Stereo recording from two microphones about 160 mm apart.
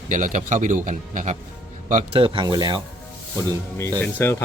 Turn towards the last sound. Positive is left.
turn(degrees=15)  # may be behind; listen again after turning